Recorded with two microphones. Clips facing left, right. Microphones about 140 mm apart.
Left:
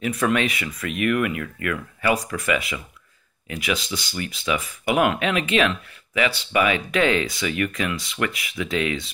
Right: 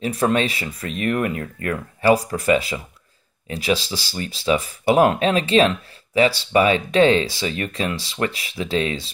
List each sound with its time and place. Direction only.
0.0 s speech: 30° right (ahead or behind)